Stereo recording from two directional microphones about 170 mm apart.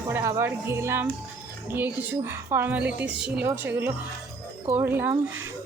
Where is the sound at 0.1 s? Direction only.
15° right (ahead or behind).